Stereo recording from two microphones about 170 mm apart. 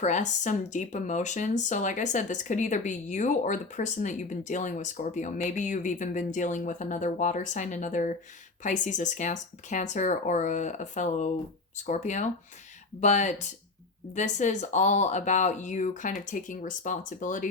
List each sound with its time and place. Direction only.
0.0 s speech: 45° left (ahead or behind)